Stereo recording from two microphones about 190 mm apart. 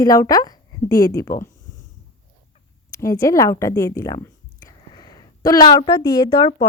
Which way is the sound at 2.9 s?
15° left (ahead or behind).